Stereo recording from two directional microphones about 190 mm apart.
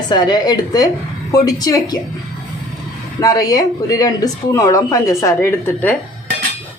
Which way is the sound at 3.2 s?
20° left (ahead or behind).